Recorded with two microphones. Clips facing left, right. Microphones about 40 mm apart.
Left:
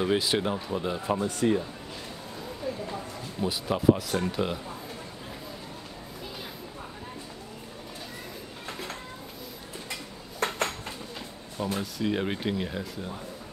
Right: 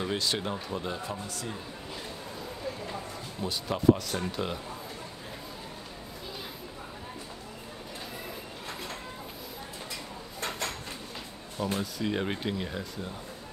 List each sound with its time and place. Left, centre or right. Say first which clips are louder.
0.0 s speech: left 5 dB; centre
1.0 s speech: left 11 dB; left
2.9 s speech: left 2 dB; centre
10.4 s dishes: left 6 dB; left
11.6 s speech: left 1 dB; centre